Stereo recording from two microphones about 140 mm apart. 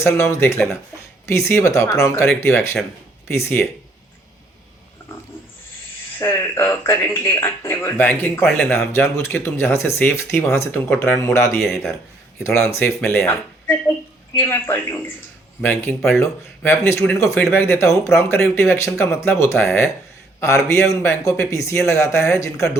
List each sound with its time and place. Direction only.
0.0 s speech: 20° left (ahead or behind)
6.1 s speech: 15° left (ahead or behind)
11.5 s speech: centre (ahead or behind)
12.4 s speech: 20° left (ahead or behind)